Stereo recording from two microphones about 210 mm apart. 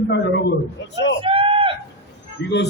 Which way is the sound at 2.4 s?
55° left (ahead or behind).